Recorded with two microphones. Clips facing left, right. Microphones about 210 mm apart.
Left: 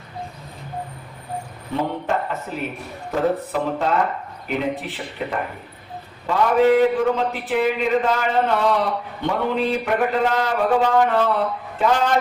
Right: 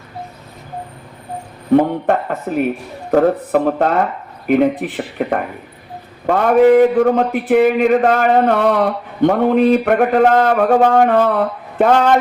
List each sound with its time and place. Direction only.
1.7 s a man's voice: 55° right (ahead or behind)